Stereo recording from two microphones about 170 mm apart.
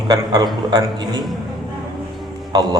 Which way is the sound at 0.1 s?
25° right (ahead or behind).